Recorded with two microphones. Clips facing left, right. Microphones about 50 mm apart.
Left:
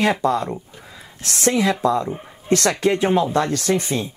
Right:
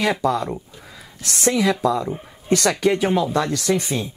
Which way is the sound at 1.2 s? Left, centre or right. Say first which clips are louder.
Left 1 dB; left.